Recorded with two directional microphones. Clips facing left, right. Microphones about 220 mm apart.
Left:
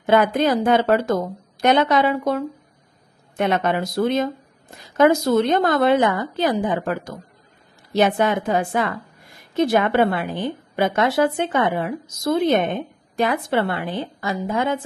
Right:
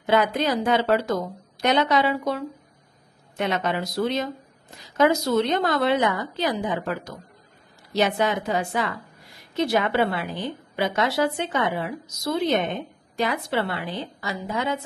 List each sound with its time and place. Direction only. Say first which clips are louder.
0.0 s a woman's voice: left 4 dB; 50° left (ahead or behind)